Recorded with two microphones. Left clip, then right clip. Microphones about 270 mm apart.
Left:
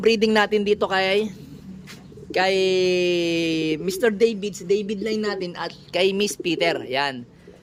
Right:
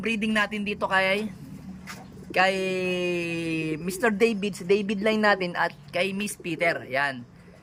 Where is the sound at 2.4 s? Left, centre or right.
Centre.